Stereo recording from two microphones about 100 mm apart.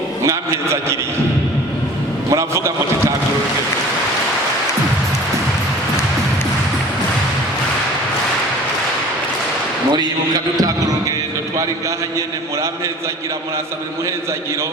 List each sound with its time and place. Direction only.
0.2 s a man's voice: 30° right (ahead or behind)
2.3 s a man's voice: 30° right (ahead or behind)
9.9 s a sound: 45° right (ahead or behind)